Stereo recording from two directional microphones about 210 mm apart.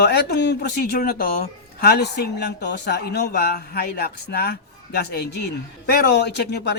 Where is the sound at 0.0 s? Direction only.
50° left (ahead or behind).